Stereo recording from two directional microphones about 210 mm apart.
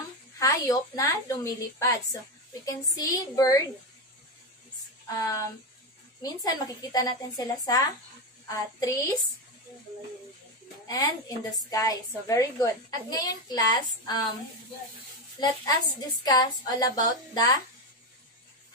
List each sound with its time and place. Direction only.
0.4 s a child's voice: 15° left (ahead or behind)
5.0 s a child's voice: 15° left (ahead or behind)
10.9 s a child's voice: 15° left (ahead or behind)
16.3 s a child's voice: 20° left (ahead or behind)